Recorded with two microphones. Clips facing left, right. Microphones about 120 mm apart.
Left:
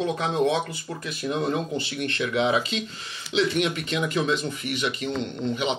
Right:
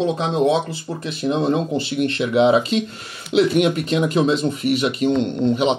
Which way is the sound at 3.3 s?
45° right (ahead or behind).